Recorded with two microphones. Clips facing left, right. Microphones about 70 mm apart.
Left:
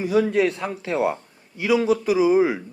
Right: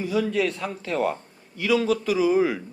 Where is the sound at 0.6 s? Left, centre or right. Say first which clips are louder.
Left 2 dB; centre.